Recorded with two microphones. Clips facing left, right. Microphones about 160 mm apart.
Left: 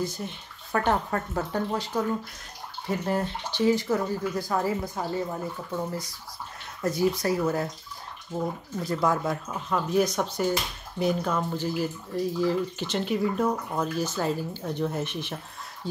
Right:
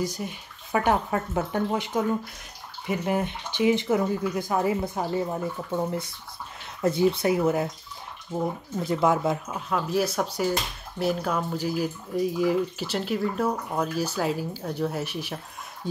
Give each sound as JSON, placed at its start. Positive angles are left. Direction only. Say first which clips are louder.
{"t": 0.0, "sound": "speech", "louder": "right 2 dB", "side_deg": -10}
{"t": 9.5, "sound": "speech", "louder": "even", "side_deg": -5}